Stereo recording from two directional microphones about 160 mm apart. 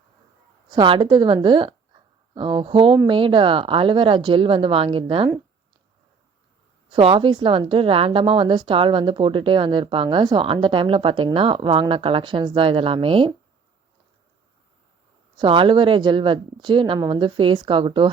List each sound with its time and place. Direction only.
0.7 s a woman's voice: 30° right (ahead or behind)
6.9 s a woman's voice: 30° right (ahead or behind)
15.4 s a woman's voice: 30° right (ahead or behind)